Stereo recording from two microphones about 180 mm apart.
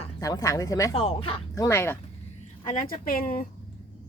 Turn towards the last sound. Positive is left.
turn(degrees=50)  # may be behind; listen again after turning